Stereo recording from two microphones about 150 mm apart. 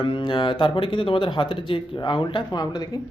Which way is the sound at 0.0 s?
30° left (ahead or behind).